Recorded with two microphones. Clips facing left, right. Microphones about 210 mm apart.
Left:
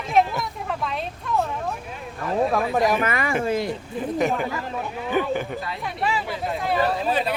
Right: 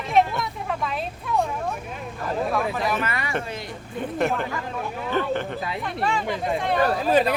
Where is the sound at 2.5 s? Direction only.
50° left (ahead or behind).